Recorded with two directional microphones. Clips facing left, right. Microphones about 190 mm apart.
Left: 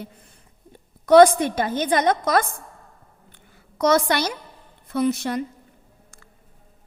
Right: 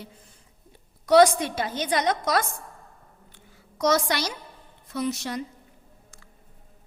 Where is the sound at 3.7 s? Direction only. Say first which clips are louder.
Left 4 dB; 55° left (ahead or behind).